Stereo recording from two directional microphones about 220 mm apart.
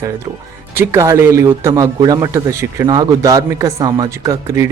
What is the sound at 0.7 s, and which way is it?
Speech, 10° right (ahead or behind).